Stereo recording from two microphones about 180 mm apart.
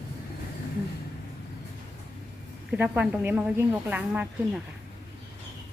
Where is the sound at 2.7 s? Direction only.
5° right (ahead or behind).